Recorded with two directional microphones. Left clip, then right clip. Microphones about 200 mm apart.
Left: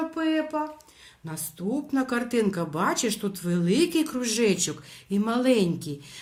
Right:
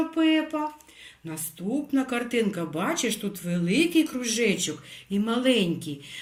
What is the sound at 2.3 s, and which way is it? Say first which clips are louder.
Speech: left 1 dB; 55° left (ahead or behind).